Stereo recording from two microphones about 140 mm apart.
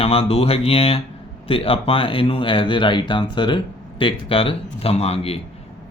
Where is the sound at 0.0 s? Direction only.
45° left (ahead or behind).